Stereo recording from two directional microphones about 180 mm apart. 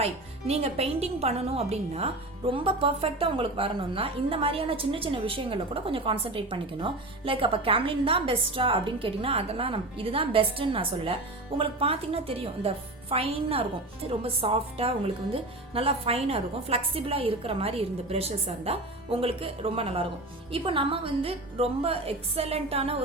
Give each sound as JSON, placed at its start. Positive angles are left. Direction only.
{"t": 0.0, "sound": "a woman's voice", "side_deg": -35}